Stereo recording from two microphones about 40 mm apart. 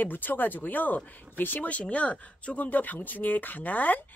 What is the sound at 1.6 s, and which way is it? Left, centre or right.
Speech, left.